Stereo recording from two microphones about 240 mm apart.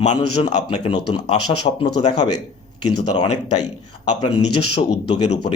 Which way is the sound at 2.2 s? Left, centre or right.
Left.